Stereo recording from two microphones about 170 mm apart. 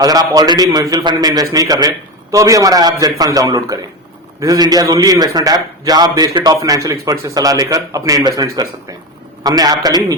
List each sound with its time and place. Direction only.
0.0 s a man's voice: 20° right (ahead or behind)